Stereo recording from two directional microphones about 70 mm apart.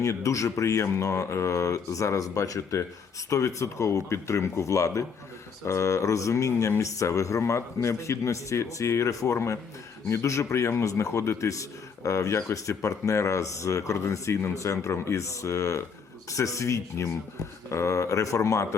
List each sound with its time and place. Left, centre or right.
0.0 s speech: left